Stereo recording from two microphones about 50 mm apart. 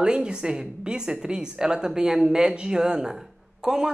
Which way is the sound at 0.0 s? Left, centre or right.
Centre.